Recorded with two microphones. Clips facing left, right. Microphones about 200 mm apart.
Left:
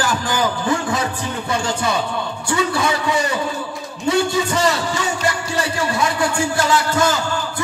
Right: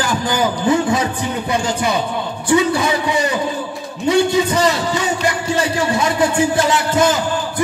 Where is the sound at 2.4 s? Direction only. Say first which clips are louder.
Right 5 dB; 20° right (ahead or behind).